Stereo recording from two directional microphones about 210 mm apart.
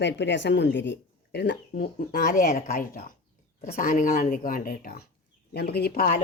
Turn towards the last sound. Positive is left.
turn(degrees=45)  # may be behind; listen again after turning